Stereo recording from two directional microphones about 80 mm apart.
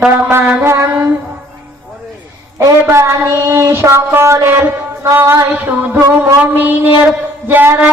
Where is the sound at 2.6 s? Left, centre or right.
Right.